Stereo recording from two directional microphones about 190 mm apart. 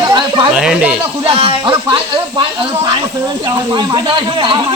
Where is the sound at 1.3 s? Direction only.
30° right (ahead or behind).